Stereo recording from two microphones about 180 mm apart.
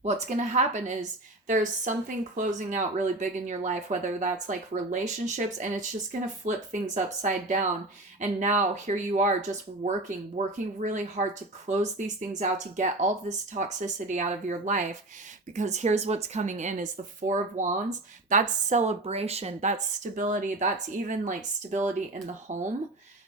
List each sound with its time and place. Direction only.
0.0 s speech: 40° right (ahead or behind)